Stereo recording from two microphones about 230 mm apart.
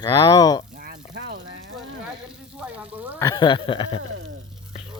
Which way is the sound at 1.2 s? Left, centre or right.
Right.